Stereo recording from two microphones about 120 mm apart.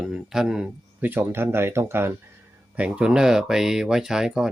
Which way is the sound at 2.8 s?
10° right (ahead or behind).